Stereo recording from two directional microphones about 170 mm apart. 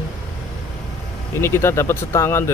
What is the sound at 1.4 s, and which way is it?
Speech, 15° left (ahead or behind).